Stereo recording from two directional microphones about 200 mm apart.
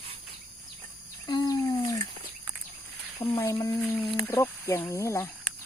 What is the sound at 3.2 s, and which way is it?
Speech, 15° left (ahead or behind).